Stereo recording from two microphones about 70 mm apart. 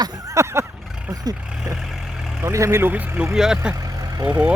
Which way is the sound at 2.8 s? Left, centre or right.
Right.